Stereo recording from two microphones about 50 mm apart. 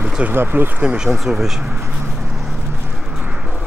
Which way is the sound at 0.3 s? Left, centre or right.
Right.